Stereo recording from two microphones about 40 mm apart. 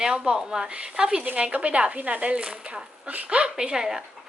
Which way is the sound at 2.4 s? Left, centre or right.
Right.